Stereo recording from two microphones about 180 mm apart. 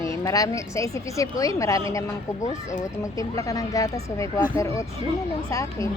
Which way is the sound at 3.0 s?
20° left (ahead or behind).